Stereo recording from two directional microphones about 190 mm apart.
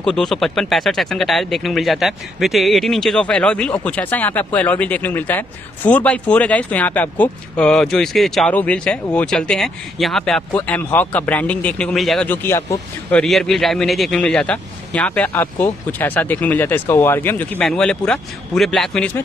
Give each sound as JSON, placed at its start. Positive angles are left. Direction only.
{"t": 0.0, "sound": "a man's voice", "side_deg": 5}